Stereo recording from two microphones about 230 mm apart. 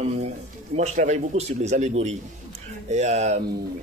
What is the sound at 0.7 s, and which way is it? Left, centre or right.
Speech, right.